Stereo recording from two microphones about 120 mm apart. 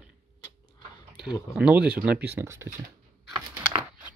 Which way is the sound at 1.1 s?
5° right (ahead or behind).